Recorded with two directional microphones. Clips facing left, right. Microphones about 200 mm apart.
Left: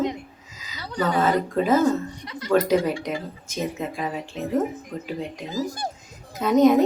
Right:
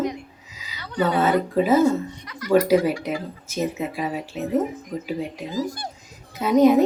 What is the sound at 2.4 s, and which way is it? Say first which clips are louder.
Speech: right 2 dB; 25° left (ahead or behind).